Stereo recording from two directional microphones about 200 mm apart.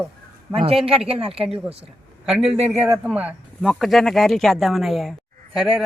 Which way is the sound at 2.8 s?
5° right (ahead or behind).